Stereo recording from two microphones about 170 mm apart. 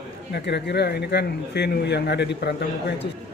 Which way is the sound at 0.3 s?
80° left.